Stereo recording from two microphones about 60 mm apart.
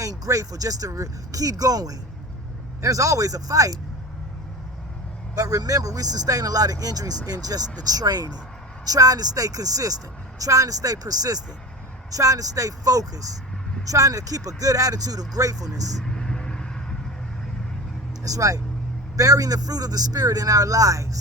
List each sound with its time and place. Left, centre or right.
0.0 s speech: right
2.8 s speech: right
5.3 s a man's voice: right
10.3 s speech: right
12.1 s speech: right
16.0 s vehicle: centre
18.3 s speech: right